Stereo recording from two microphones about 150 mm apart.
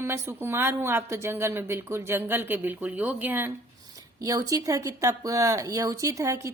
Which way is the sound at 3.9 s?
25° right (ahead or behind).